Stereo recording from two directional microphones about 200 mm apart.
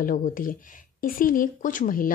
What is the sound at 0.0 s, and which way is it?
A woman's voice, 45° left (ahead or behind).